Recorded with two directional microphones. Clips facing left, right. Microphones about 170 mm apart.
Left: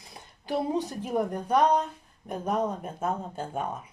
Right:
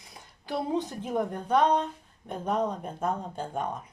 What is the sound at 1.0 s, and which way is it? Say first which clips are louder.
A woman's voice: left 1 dB; 10° left (ahead or behind).